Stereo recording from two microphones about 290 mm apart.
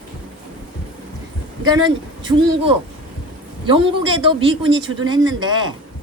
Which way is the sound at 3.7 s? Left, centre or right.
Centre.